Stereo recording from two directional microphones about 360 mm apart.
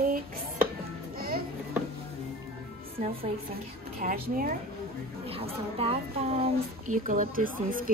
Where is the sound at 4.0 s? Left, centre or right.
Right.